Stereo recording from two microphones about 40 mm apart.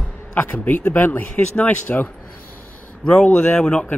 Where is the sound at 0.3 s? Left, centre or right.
Left.